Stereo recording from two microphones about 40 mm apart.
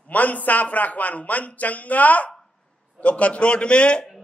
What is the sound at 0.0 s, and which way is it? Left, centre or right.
A man's voice, left.